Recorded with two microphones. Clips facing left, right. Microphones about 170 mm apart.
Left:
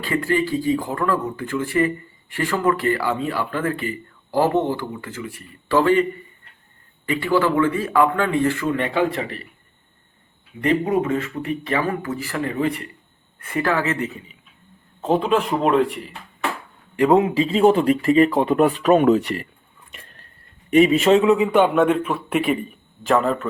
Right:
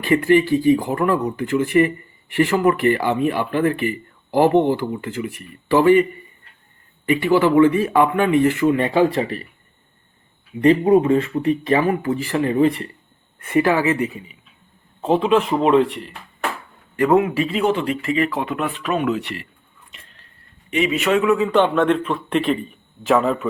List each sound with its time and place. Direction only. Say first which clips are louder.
0.0 s speech: right 6 dB; 20° right (ahead or behind)
10.6 s speech: right 6 dB; 25° right (ahead or behind)
15.0 s speech: right 2 dB; 5° right (ahead or behind)
17.0 s speech: even; 15° left (ahead or behind); by 19.5 s 40° left (ahead or behind)
19.9 s a sound: left 5 dB; 50° left (ahead or behind)
20.7 s a man's voice: left 5 dB; 40° left (ahead or behind); by 23.5 s centre (ahead or behind)